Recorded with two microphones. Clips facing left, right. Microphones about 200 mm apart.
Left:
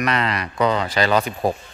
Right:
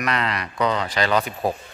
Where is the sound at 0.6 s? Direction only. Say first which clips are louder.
Left 3 dB; 40° left (ahead or behind).